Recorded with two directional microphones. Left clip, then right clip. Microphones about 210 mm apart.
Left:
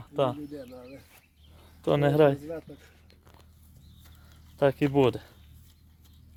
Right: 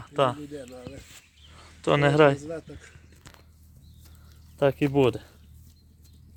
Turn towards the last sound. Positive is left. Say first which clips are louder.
# right 1 dB
turn(degrees=0)  # may be behind; listen again after turning